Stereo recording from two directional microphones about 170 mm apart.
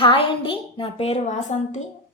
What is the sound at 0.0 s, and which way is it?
A woman's voice, 30° left (ahead or behind).